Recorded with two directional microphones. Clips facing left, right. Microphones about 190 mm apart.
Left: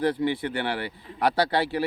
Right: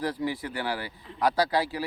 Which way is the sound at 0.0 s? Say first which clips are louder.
Left 5 dB; 25° left (ahead or behind).